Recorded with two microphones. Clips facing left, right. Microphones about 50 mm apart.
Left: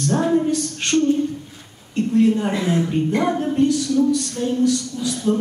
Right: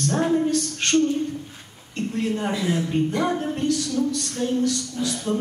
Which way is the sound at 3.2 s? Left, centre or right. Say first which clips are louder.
Left 5 dB; left.